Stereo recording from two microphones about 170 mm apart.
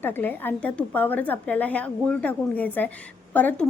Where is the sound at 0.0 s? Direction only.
10° left (ahead or behind).